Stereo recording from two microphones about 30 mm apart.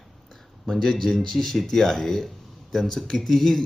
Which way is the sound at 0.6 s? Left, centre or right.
Centre.